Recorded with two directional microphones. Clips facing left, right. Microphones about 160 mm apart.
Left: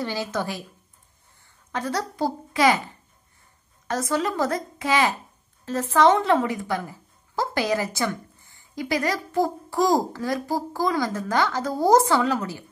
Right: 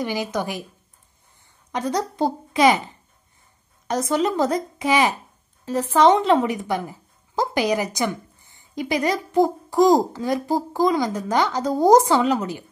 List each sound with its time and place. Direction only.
0.0 s a woman's voice: 15° right (ahead or behind)
1.7 s a woman's voice: 20° right (ahead or behind)
3.8 s a woman's voice: 20° right (ahead or behind)